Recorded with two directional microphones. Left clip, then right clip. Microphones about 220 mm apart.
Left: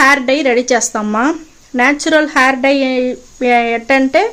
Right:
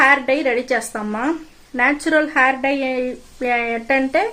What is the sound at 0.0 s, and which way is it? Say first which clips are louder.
A woman's voice: left 4 dB; 40° left (ahead or behind).